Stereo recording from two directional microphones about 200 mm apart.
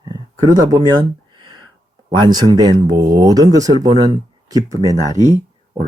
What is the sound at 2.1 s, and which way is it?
Speech, 20° right (ahead or behind).